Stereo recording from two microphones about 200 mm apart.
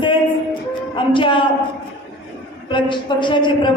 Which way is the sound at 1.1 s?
25° left (ahead or behind).